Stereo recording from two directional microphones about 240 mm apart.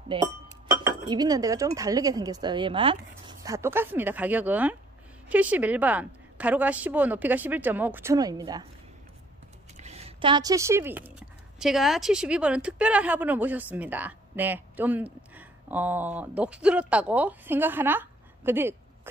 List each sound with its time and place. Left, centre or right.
0.1 s a woman's voice: right
9.8 s speech: right; by 18.8 s centre